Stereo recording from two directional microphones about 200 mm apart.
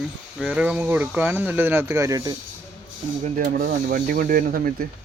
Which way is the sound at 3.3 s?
50° right (ahead or behind).